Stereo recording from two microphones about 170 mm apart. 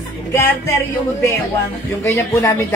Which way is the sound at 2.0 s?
20° left (ahead or behind).